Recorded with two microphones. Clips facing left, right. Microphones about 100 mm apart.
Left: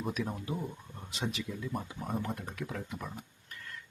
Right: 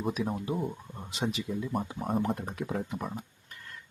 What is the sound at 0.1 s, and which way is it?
Speech, 20° right (ahead or behind).